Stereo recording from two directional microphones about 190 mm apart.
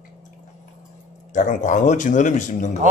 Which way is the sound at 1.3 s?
40° left (ahead or behind).